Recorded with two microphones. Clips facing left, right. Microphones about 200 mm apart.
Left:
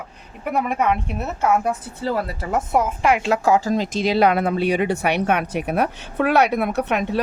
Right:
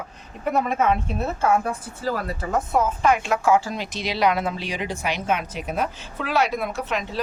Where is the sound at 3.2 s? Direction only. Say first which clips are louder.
Left 2 dB; 35° left (ahead or behind); by 7.2 s 60° left (ahead or behind).